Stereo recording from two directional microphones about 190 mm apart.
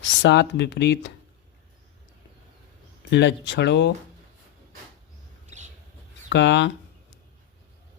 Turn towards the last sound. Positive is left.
turn(degrees=70)  # may be behind; listen again after turning